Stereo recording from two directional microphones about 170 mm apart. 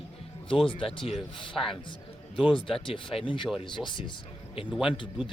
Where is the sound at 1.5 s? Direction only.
Centre (ahead or behind).